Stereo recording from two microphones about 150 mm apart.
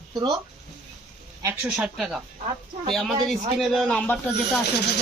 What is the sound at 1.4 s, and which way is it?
Speech, 5° right (ahead or behind).